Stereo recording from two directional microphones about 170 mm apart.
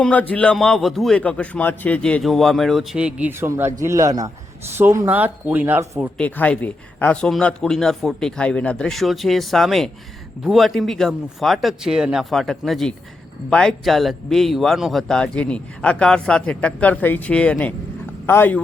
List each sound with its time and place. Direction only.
0.0 s a man's voice: 10° left (ahead or behind); by 6.1 s 15° right (ahead or behind)
6.1 s a man's voice: 10° left (ahead or behind)